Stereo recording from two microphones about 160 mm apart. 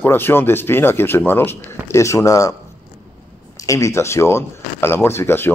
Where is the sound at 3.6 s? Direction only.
20° left (ahead or behind).